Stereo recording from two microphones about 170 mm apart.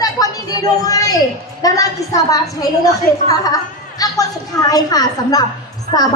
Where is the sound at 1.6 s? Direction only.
20° left (ahead or behind).